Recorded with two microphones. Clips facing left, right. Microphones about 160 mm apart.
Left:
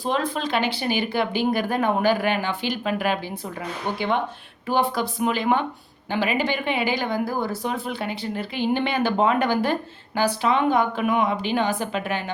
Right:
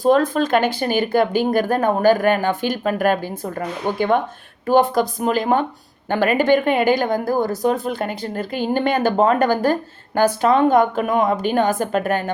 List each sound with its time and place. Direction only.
0.0 s speech: 45° right (ahead or behind)